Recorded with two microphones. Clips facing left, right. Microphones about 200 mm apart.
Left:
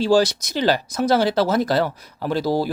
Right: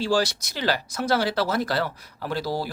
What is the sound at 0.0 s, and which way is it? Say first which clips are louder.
Speech: left 6 dB; 20° left (ahead or behind).